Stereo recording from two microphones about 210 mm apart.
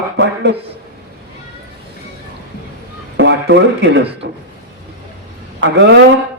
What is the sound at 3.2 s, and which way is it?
A man's voice, 55° right (ahead or behind).